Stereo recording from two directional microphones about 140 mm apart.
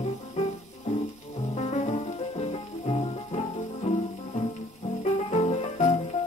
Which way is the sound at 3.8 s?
55° left (ahead or behind).